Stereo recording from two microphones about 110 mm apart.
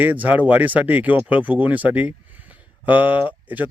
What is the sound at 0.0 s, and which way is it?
Speech, 15° right (ahead or behind).